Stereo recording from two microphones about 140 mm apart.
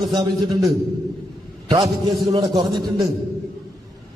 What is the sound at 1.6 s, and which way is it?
A man's voice, 30° right (ahead or behind).